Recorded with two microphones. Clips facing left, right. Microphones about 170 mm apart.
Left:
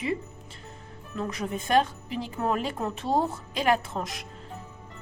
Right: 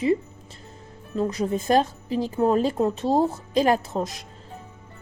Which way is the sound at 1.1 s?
35° right (ahead or behind).